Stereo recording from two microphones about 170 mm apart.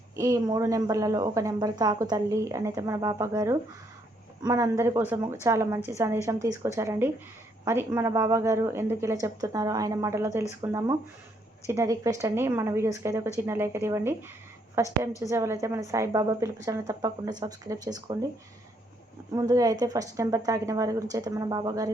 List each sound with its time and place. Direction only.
0.2 s a woman's voice: 20° right (ahead or behind)
19.3 s a woman's voice: 20° right (ahead or behind)